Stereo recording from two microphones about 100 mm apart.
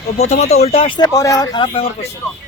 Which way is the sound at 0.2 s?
90° left.